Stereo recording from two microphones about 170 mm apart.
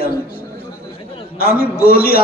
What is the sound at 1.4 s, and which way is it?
Speech, 65° left (ahead or behind).